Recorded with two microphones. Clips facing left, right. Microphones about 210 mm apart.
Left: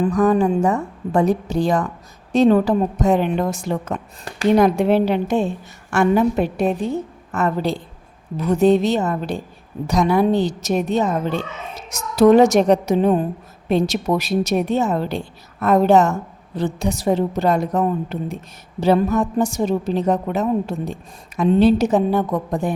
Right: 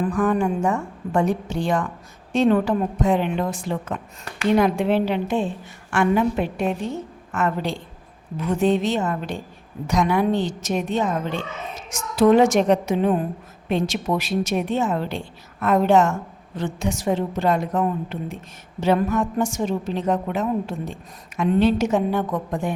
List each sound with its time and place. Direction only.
0.0 s a woman's voice: 35° left (ahead or behind)